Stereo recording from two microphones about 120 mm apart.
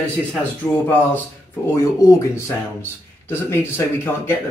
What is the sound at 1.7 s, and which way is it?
A man's voice, 30° left (ahead or behind).